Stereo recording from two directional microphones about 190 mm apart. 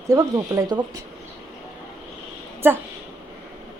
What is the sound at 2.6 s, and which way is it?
Speech, 10° right (ahead or behind).